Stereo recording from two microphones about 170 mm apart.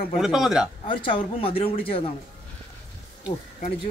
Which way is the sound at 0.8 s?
30° left (ahead or behind).